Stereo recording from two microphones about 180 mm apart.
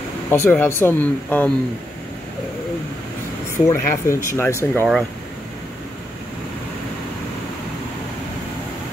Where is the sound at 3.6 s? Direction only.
15° left (ahead or behind).